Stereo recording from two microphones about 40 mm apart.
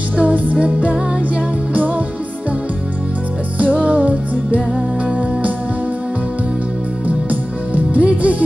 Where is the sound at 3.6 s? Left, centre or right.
Right.